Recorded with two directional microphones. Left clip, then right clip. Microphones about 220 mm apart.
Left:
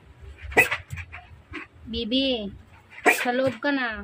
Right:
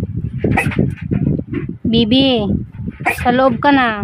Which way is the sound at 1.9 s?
55° right (ahead or behind).